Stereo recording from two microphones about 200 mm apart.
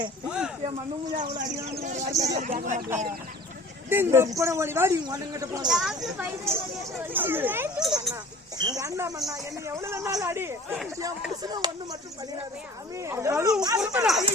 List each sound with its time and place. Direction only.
0.3 s speech: 5° right (ahead or behind)
1.2 s speech: 20° right (ahead or behind)
1.8 s speech: 35° right (ahead or behind)
3.8 s speech: 10° right (ahead or behind)
5.6 s speech: centre (ahead or behind)
8.1 s speech: 20° right (ahead or behind)
13.0 s speech: 15° right (ahead or behind)
13.8 s speech: 5° right (ahead or behind)